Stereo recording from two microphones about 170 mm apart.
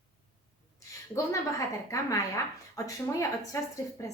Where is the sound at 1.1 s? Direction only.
20° left (ahead or behind).